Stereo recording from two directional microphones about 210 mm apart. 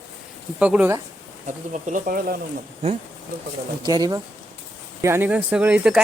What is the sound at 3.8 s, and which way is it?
Speech, 20° right (ahead or behind).